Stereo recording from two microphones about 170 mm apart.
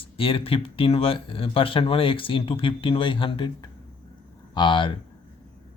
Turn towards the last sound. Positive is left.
turn(degrees=30)  # may be behind; listen again after turning